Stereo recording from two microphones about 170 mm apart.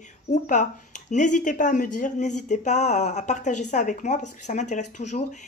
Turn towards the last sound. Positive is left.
turn(degrees=45)  # may be behind; listen again after turning